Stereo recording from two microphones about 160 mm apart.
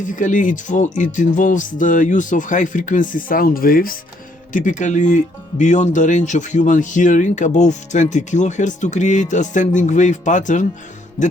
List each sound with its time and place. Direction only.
0.0 s speech: 55° left (ahead or behind)